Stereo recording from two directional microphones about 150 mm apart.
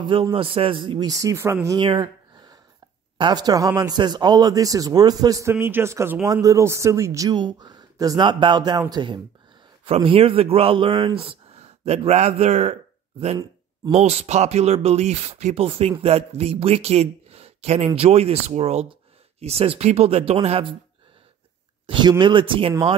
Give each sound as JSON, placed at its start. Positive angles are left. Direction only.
{"t": 0.0, "sound": "speech", "side_deg": -35}
{"t": 1.8, "sound": "a sound", "side_deg": -30}
{"t": 3.2, "sound": "speech", "side_deg": -30}
{"t": 13.9, "sound": "speech", "side_deg": -45}
{"t": 21.8, "sound": "speech", "side_deg": -35}